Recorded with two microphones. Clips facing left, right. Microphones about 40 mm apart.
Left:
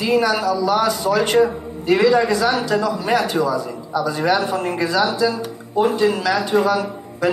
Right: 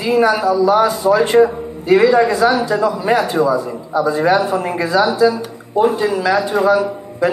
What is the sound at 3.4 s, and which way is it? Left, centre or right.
Speech, right.